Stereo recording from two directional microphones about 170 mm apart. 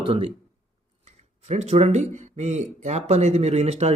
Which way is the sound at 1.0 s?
40° right (ahead or behind).